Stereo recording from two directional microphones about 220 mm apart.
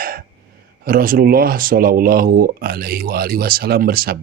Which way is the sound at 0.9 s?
40° right (ahead or behind).